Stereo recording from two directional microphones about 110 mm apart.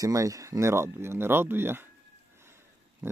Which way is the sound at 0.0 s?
30° right (ahead or behind).